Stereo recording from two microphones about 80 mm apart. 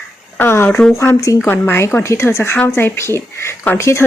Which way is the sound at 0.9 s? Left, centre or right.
Left.